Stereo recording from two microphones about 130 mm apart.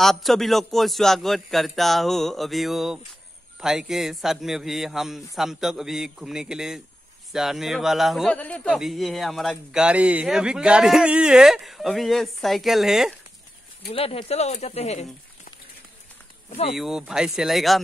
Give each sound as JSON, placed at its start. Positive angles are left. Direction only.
{"t": 0.0, "sound": "speech", "side_deg": 0}
{"t": 8.7, "sound": "speech", "side_deg": 0}
{"t": 13.9, "sound": "speech", "side_deg": 50}
{"t": 16.7, "sound": "speech", "side_deg": 0}